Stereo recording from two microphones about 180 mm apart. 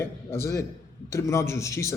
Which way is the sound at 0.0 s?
15° left (ahead or behind).